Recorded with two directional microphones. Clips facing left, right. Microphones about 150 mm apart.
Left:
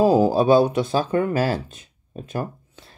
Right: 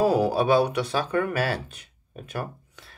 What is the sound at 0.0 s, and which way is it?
Speech, 25° left (ahead or behind).